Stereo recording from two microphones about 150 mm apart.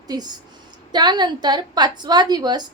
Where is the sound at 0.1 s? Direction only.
25° right (ahead or behind).